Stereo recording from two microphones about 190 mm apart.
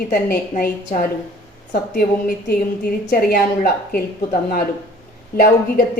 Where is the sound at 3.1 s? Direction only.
50° left (ahead or behind).